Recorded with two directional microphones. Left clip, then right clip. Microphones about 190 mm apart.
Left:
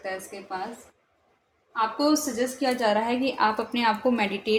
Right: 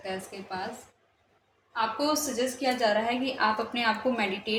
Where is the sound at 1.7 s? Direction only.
35° left (ahead or behind).